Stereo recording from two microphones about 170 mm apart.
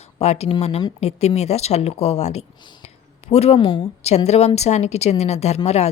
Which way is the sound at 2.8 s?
40° left (ahead or behind).